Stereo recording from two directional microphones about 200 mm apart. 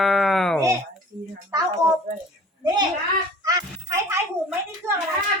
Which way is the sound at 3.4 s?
15° right (ahead or behind).